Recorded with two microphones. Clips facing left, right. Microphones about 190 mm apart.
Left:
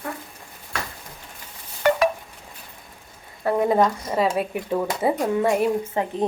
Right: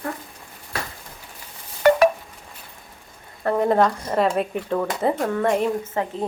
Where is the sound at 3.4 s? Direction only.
10° left (ahead or behind).